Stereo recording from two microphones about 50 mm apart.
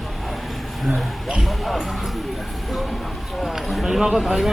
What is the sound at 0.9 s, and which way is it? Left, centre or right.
Speech, centre.